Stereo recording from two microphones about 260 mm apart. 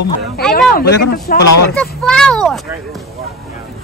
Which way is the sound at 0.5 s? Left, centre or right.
Left.